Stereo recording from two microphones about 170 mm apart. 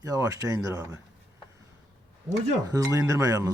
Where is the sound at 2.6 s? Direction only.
20° right (ahead or behind).